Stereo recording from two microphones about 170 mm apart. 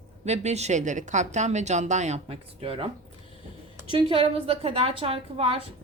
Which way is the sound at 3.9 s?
30° right (ahead or behind).